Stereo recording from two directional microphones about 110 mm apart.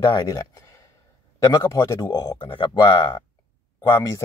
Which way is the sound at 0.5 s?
25° left (ahead or behind).